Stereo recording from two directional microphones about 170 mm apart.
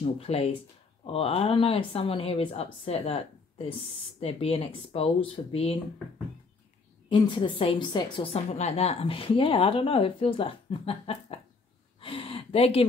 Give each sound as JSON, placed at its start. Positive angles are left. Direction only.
{"t": 0.0, "sound": "a woman's voice", "side_deg": 35}
{"t": 7.1, "sound": "a woman's voice", "side_deg": 30}
{"t": 12.0, "sound": "a sound", "side_deg": 30}